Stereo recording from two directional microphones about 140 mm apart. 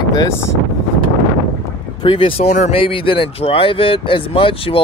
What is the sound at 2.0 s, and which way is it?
Speech, 35° left (ahead or behind).